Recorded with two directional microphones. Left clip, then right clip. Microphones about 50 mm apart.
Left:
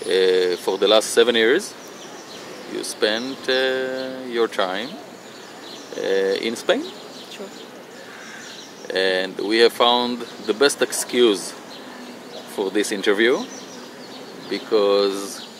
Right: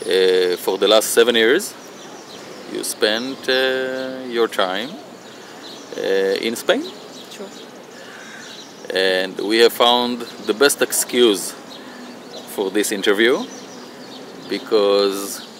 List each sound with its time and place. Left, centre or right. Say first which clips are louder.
0.1 s speech: right 2 dB; right
2.7 s speech: right 2 dB; right
5.9 s speech: right 2 dB; right
8.8 s speech: right 2 dB; right
12.5 s speech: right 2 dB; right
14.5 s speech: right 2 dB; right